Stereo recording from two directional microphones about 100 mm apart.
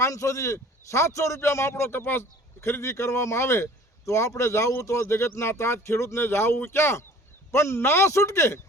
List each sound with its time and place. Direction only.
0.0 s a man's voice: 35° left (ahead or behind)